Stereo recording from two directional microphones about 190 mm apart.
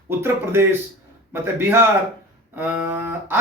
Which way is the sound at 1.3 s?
15° right (ahead or behind).